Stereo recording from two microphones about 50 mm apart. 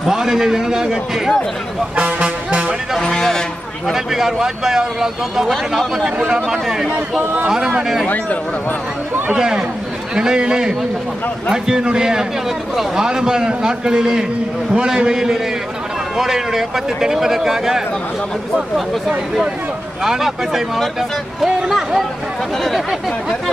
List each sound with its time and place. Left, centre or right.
0.0 s speech: centre
2.0 s speech: right
3.0 s speech: centre
3.8 s speech: centre
5.5 s speech: centre
6.0 s speech: centre
6.9 s speech: right
7.4 s speech: centre
9.3 s speech: centre
20.0 s speech: centre